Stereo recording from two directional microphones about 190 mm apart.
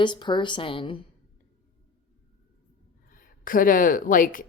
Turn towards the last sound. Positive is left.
turn(degrees=45)  # may be behind; listen again after turning